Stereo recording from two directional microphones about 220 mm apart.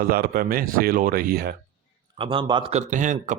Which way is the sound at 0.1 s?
40° right (ahead or behind).